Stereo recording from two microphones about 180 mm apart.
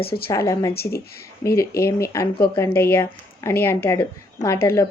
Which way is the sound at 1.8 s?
15° left (ahead or behind).